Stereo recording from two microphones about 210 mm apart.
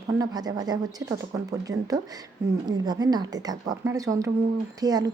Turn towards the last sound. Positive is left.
turn(degrees=-20)  # may be behind; listen again after turning